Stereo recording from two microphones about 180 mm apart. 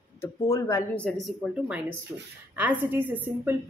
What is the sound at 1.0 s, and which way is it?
A woman's voice, 5° left (ahead or behind).